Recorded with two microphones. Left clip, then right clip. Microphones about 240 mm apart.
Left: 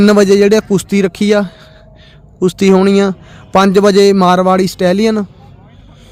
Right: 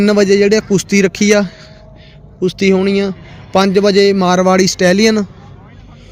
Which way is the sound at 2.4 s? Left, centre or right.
Left.